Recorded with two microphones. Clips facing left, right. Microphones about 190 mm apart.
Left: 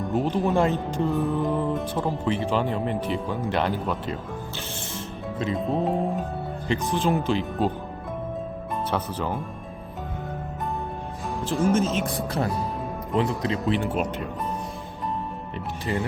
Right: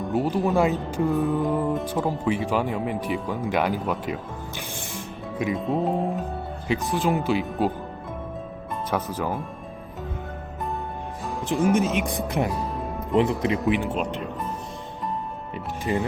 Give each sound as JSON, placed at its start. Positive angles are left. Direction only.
{"t": 0.0, "sound": "speech", "side_deg": 0}
{"t": 1.5, "sound": "speech", "side_deg": -15}
{"t": 5.5, "sound": "speech", "side_deg": 0}
{"t": 8.9, "sound": "speech", "side_deg": -10}
{"t": 11.4, "sound": "speech", "side_deg": -15}
{"t": 13.8, "sound": "speech", "side_deg": 0}
{"t": 15.9, "sound": "speech", "side_deg": -20}